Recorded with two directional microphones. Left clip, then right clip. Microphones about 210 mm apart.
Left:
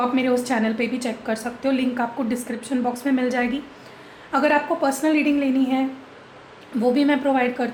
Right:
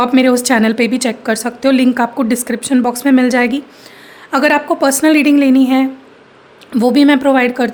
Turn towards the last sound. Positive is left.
turn(degrees=-60)  # may be behind; listen again after turning